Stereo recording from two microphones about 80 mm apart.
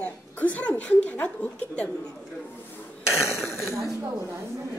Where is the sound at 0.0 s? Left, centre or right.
Centre.